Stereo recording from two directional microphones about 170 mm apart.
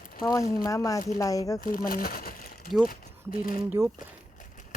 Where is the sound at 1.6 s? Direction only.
55° left (ahead or behind).